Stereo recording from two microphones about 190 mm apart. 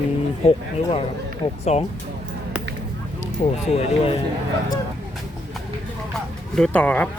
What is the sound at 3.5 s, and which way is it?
Speech, 35° left (ahead or behind).